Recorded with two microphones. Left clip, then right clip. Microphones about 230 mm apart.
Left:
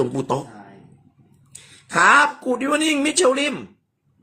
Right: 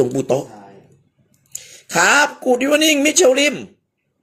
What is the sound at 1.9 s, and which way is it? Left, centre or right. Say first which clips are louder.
Speech: even; right.